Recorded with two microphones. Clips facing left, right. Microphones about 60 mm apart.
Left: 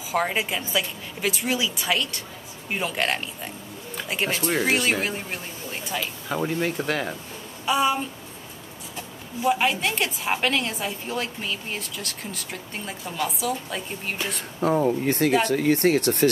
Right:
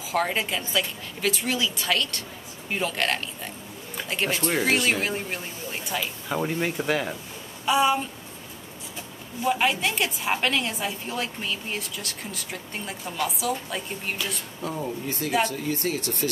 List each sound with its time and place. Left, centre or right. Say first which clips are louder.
0.1 s a woman's voice: left 1 dB; centre
9.4 s a woman's voice: left 1 dB; centre
14.6 s speech: left 10 dB; left